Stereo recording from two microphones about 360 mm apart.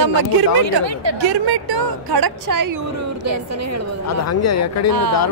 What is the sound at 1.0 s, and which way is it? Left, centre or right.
A woman's voice, right.